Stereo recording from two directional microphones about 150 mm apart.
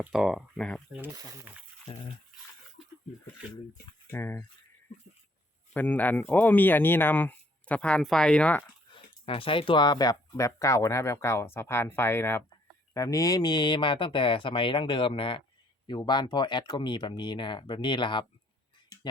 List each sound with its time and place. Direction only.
0.0 s speech: centre (ahead or behind)
0.9 s speech: 15° right (ahead or behind)
1.9 s speech: 40° left (ahead or behind)
4.1 s a sound: 15° left (ahead or behind)
5.7 s speech: 10° left (ahead or behind)
8.9 s speech: 35° left (ahead or behind)